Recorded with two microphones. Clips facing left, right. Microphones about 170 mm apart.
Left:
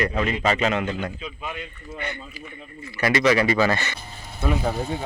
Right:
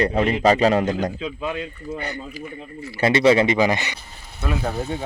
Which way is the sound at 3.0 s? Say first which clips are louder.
Right 4 dB; 30° right (ahead or behind).